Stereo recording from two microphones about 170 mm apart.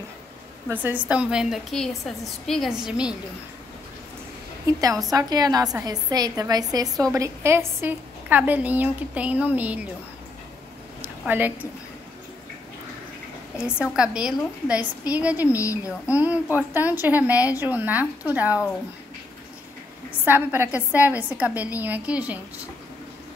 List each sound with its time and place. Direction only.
0.7 s a woman's voice: 10° right (ahead or behind)
4.7 s a woman's voice: 20° right (ahead or behind)
11.2 s a woman's voice: 10° right (ahead or behind)
13.9 s a woman's voice: 5° right (ahead or behind)
20.1 s a woman's voice: 10° right (ahead or behind)